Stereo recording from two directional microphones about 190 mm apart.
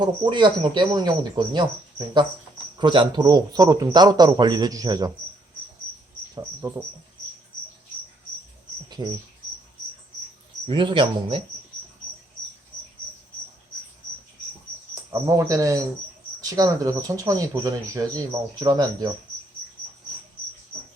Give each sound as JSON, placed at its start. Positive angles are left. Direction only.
{"t": 0.0, "sound": "a man's voice", "side_deg": -25}
{"t": 2.7, "sound": "a man's voice", "side_deg": -25}
{"t": 6.3, "sound": "speech", "side_deg": -15}
{"t": 8.9, "sound": "cricket", "side_deg": -25}
{"t": 10.7, "sound": "a man's voice", "side_deg": -25}
{"t": 15.1, "sound": "speech", "side_deg": -15}